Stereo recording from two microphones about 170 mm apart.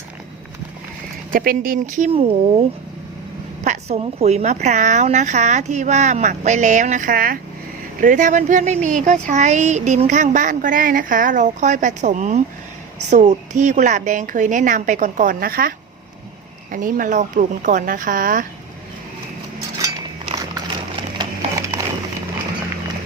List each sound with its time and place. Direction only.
1.3 s speech: 60° right (ahead or behind)
2.0 s speech: 35° right (ahead or behind); by 15.7 s 60° right (ahead or behind)
16.7 s speech: 50° right (ahead or behind)
21.2 s a sound: 20° right (ahead or behind)